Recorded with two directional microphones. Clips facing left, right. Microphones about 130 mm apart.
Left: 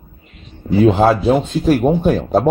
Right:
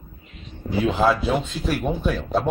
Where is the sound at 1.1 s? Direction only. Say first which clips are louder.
Left 8 dB; 35° left (ahead or behind).